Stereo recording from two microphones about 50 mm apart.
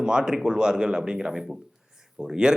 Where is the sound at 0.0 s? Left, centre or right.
Centre.